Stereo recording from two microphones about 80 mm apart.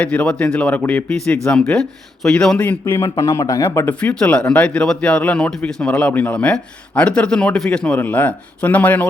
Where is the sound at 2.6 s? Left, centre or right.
Left.